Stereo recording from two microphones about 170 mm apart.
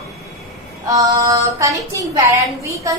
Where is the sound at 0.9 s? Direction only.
20° right (ahead or behind).